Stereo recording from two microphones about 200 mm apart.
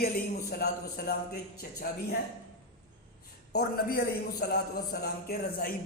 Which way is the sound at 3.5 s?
55° left (ahead or behind).